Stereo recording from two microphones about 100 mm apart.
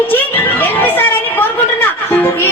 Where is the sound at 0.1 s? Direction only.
20° left (ahead or behind).